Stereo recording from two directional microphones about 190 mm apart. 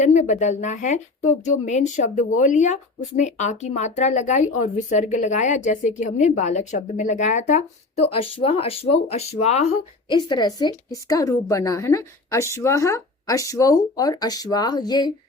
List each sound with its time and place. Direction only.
0.0 s speech: 40° left (ahead or behind)
10.2 s a woman's voice: 20° left (ahead or behind)